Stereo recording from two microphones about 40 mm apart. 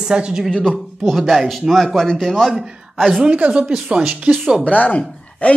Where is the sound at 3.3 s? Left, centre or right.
Right.